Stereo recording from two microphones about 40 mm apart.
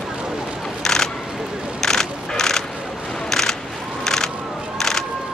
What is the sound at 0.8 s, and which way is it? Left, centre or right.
Single-lens reflex camera, centre.